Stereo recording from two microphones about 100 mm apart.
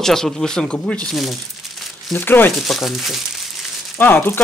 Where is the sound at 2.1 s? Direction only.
20° left (ahead or behind).